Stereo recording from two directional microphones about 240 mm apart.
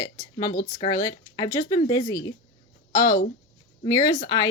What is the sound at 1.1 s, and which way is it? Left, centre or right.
A woman's voice, centre.